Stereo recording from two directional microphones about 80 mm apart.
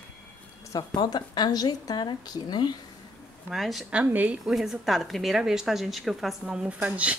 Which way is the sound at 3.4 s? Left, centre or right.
Centre.